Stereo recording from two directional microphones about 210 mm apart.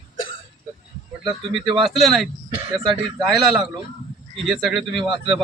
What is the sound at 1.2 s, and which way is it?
Speech, 25° right (ahead or behind).